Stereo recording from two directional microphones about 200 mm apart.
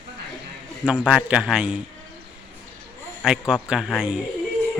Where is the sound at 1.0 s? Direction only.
5° right (ahead or behind).